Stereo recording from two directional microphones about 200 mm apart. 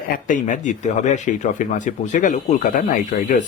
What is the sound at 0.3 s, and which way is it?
A man's voice, 40° left (ahead or behind).